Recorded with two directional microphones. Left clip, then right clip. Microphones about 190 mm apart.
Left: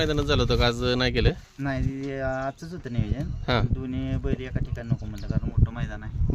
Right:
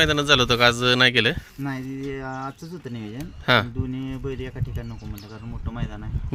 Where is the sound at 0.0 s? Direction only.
Centre (ahead or behind).